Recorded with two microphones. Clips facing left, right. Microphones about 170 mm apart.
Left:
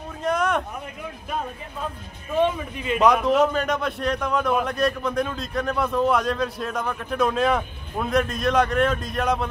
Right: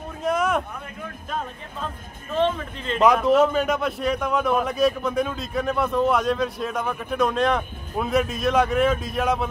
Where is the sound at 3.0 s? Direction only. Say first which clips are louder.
Right 1 dB; centre (ahead or behind).